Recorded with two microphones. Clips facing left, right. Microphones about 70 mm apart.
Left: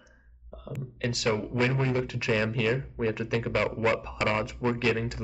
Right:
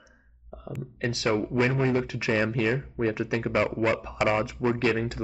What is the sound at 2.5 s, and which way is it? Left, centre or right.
Speech, right.